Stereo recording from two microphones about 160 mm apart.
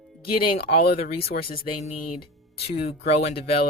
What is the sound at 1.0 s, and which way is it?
Speech, 40° left (ahead or behind).